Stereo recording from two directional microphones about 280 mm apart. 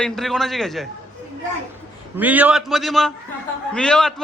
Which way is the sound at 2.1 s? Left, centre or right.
Centre.